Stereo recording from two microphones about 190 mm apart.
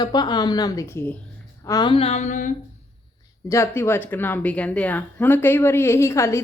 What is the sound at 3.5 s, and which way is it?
A woman's voice, 15° left (ahead or behind).